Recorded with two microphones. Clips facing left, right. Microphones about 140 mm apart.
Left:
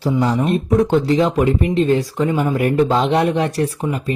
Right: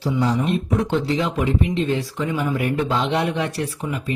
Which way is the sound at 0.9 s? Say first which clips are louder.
Left 6 dB; 45° left (ahead or behind).